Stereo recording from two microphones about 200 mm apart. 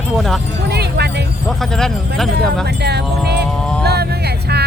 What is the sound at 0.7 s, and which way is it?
Speech, 55° right (ahead or behind).